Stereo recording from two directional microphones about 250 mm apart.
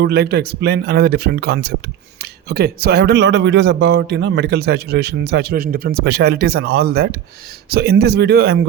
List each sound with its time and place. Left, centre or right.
0.0 s a man's voice: right